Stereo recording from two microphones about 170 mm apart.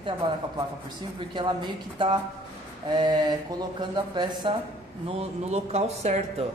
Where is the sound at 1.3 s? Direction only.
25° right (ahead or behind).